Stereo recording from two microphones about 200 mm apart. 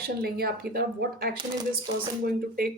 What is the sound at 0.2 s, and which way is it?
Speech, 50° right (ahead or behind).